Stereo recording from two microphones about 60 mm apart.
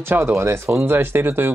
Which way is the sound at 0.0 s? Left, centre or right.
Right.